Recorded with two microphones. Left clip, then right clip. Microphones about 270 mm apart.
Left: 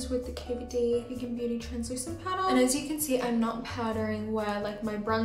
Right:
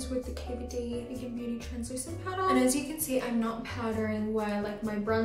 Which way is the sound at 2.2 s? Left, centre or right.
Centre.